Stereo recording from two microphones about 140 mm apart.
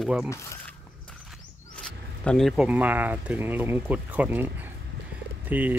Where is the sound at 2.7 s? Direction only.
10° right (ahead or behind).